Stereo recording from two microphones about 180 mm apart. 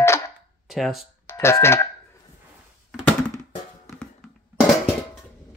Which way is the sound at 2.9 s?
5° left (ahead or behind).